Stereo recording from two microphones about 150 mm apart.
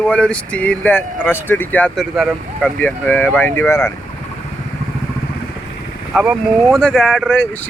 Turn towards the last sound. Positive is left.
turn(degrees=10)  # may be behind; listen again after turning